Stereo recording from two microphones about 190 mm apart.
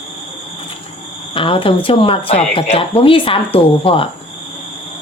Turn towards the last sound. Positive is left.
turn(degrees=30)  # may be behind; listen again after turning